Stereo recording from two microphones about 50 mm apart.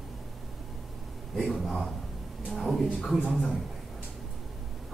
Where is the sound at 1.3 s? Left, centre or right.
Centre.